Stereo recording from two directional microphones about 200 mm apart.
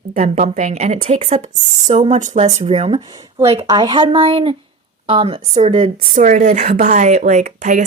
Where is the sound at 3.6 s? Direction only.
20° right (ahead or behind).